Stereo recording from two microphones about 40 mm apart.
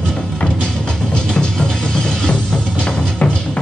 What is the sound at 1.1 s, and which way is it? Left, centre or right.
Music, left.